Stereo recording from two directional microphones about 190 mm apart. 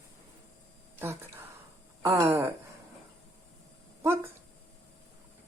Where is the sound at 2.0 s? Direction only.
15° right (ahead or behind).